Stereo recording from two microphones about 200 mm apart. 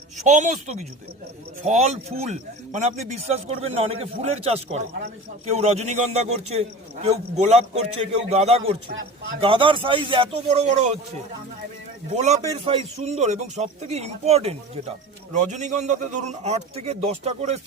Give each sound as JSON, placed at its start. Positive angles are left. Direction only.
{"t": 0.3, "sound": "speech", "side_deg": -35}
{"t": 12.1, "sound": "speech", "side_deg": -35}